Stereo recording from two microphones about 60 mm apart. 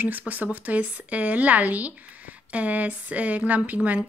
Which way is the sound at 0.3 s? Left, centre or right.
Right.